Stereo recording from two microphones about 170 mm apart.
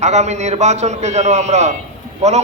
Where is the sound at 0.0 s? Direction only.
40° right (ahead or behind).